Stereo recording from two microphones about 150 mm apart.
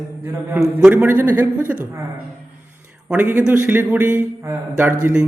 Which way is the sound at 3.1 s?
10° right (ahead or behind).